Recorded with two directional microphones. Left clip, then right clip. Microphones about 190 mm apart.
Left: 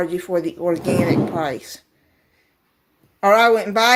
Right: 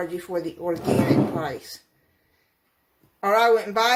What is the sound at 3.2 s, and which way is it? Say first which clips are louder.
Speech: left 5 dB; 45° left (ahead or behind).